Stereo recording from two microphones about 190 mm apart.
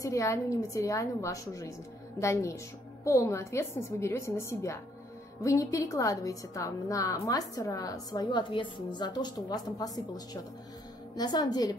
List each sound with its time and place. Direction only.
0.0 s a woman's voice: 15° left (ahead or behind)